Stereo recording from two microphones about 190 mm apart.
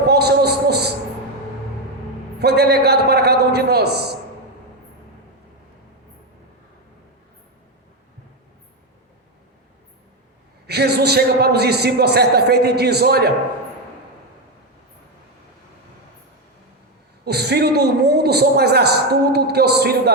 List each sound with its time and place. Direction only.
0.1 s a sound: 60° right (ahead or behind)
2.4 s a man's voice: 60° right (ahead or behind)
10.7 s a man's voice: 60° right (ahead or behind)
17.2 s a man's voice: 60° right (ahead or behind)